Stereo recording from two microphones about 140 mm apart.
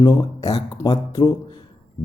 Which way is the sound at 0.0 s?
25° left (ahead or behind).